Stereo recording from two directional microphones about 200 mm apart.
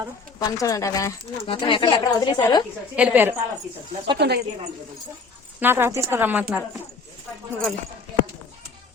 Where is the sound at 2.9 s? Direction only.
10° right (ahead or behind).